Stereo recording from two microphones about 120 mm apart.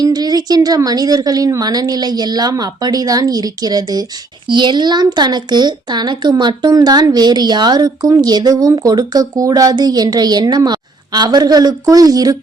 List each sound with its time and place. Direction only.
0.0 s a woman's voice: 35° right (ahead or behind)